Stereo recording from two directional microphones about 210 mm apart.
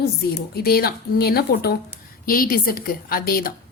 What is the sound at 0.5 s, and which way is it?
A woman's voice, 45° left (ahead or behind).